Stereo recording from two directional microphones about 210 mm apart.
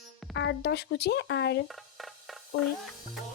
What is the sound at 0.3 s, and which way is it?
Speech, 55° left (ahead or behind).